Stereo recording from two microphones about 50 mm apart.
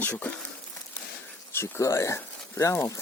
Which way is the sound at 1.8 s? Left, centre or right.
Left.